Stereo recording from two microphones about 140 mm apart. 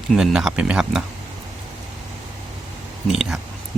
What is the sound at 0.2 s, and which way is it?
Speech, 5° right (ahead or behind).